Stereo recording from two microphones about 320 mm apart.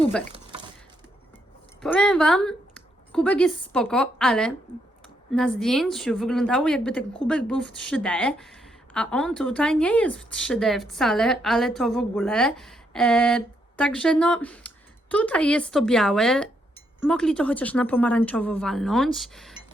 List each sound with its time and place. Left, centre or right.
1.8 s a woman's voice: centre